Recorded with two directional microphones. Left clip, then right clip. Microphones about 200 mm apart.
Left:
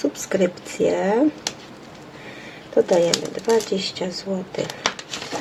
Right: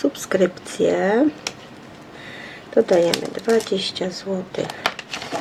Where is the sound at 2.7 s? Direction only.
15° right (ahead or behind).